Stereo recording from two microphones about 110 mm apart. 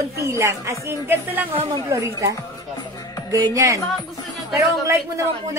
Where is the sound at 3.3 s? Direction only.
30° right (ahead or behind).